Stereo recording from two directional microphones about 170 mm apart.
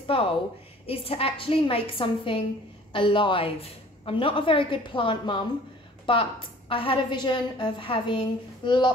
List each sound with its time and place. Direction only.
0.0 s a woman's voice: 30° left (ahead or behind)